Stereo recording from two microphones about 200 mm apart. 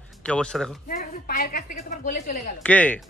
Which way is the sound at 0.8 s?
45° left (ahead or behind).